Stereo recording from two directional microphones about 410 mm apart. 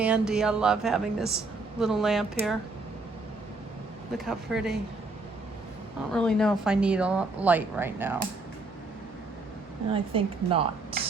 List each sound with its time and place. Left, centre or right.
0.0 s a woman's voice: centre
4.3 s a woman's voice: centre
6.1 s a woman's voice: centre
9.9 s speech: centre